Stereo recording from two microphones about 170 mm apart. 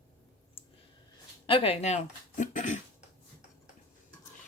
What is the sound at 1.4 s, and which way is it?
Speech, 30° left (ahead or behind).